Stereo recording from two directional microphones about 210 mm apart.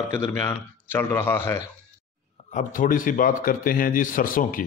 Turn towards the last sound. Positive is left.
turn(degrees=40)  # may be behind; listen again after turning